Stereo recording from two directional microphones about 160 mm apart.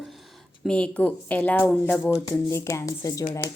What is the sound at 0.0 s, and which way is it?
Speech, centre (ahead or behind).